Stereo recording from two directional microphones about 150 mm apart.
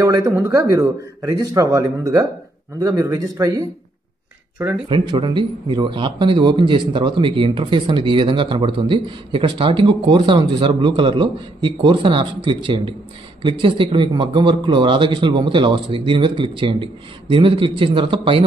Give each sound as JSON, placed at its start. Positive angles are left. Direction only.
{"t": 0.0, "sound": "speech", "side_deg": -20}
{"t": 4.8, "sound": "speech", "side_deg": -35}